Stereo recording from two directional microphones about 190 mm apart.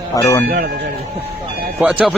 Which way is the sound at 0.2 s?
15° left (ahead or behind).